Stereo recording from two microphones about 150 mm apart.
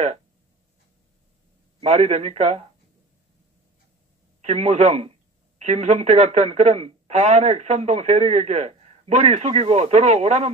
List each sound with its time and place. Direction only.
1.8 s speech: 45° right (ahead or behind)
4.4 s speech: 45° right (ahead or behind)